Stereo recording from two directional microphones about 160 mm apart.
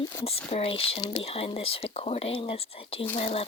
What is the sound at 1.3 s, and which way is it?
Speech, 40° left (ahead or behind).